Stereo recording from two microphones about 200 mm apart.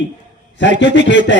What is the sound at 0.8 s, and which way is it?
Speech, 65° left (ahead or behind).